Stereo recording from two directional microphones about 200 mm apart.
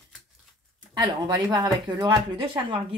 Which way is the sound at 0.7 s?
20° right (ahead or behind).